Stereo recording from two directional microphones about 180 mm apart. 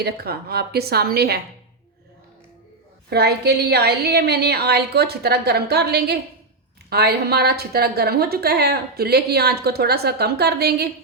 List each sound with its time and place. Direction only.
0.0 s a woman's voice: 60° right (ahead or behind)
3.1 s a woman's voice: 65° right (ahead or behind)